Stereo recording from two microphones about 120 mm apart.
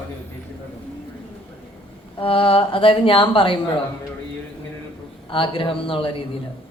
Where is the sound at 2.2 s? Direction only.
50° left (ahead or behind).